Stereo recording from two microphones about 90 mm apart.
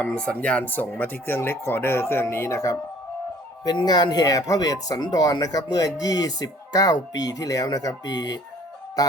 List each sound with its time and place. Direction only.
0.0 s speech: 10° left (ahead or behind); by 2.7 s 30° left (ahead or behind)
3.6 s speech: 50° left (ahead or behind)